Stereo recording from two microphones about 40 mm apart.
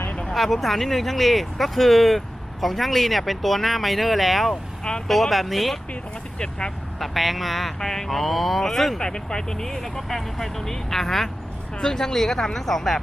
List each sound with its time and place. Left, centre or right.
0.3 s speech: centre
4.8 s speech: centre
5.0 s speech: centre
7.0 s speech: centre
9.0 s speech: centre